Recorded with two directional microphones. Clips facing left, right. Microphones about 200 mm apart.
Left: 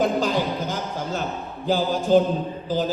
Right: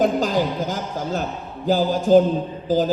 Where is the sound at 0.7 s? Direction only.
45° right (ahead or behind).